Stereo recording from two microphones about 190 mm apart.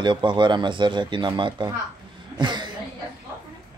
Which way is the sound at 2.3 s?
25° right (ahead or behind).